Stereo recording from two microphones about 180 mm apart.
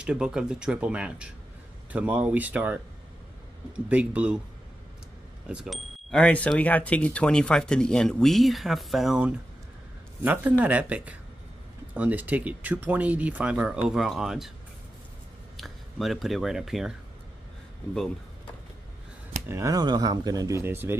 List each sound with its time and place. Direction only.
0.0 s speech: 5° right (ahead or behind)
5.5 s speech: centre (ahead or behind)
15.5 s speech: centre (ahead or behind)
19.4 s speech: 15° right (ahead or behind)